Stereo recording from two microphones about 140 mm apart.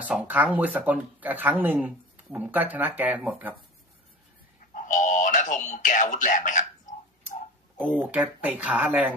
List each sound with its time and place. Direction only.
0.0 s speech: 10° right (ahead or behind)
4.8 s a sound: 65° left (ahead or behind)
7.9 s speech: 10° right (ahead or behind)